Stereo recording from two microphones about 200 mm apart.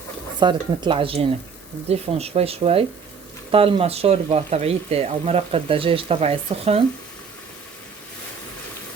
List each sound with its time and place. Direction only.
0.3 s speech: 20° right (ahead or behind)